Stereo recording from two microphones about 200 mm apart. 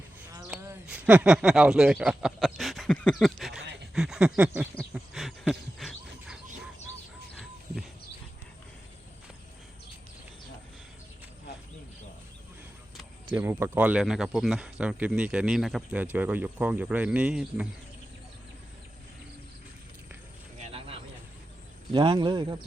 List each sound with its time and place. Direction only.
0.3 s speech: 15° right (ahead or behind)
4.8 s a sound: centre (ahead or behind)
13.3 s speech: 10° right (ahead or behind)
21.9 s speech: 20° right (ahead or behind)